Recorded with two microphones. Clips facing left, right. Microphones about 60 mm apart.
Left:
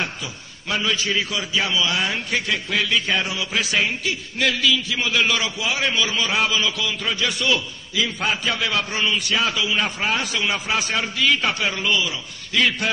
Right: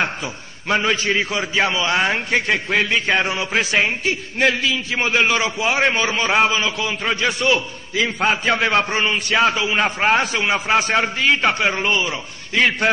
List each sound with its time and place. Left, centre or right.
0.0 s a man's voice: right